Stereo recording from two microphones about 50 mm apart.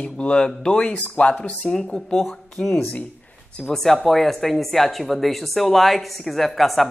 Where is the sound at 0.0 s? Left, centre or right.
Left.